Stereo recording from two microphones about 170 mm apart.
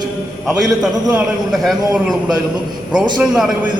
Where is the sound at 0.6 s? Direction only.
5° right (ahead or behind).